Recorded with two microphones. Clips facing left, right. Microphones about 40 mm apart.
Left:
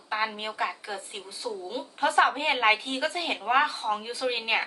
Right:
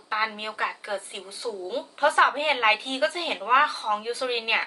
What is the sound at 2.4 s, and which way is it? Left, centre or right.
A woman's voice, centre.